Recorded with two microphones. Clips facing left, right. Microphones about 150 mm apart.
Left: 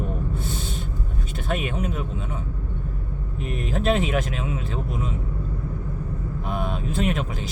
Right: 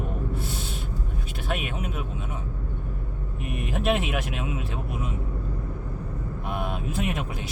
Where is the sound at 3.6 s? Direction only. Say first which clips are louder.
Left 3 dB; 5° right (ahead or behind).